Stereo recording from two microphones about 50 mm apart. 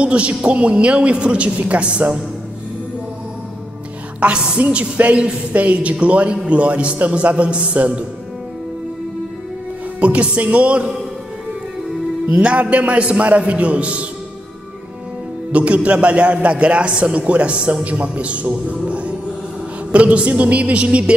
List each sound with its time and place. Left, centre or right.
0.0 s a man's voice: right
4.2 s a man's voice: right
9.9 s a man's voice: right
12.3 s a man's voice: right
15.5 s a man's voice: right